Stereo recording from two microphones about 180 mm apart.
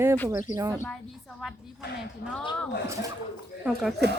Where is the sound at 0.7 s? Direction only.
15° left (ahead or behind).